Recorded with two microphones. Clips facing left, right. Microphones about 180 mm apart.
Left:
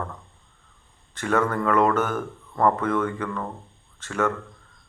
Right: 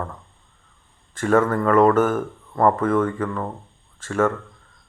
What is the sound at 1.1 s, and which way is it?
Speech, 45° right (ahead or behind).